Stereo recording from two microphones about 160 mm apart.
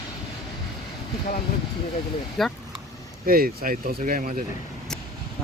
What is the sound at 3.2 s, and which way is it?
Speech, 65° right (ahead or behind).